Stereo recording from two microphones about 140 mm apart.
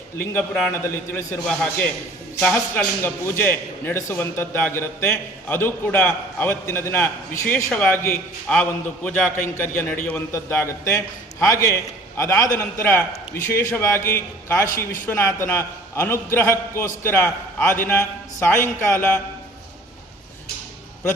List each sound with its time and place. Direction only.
0.2 s a man's voice: 10° left (ahead or behind)
1.5 s a man's voice: 10° left (ahead or behind)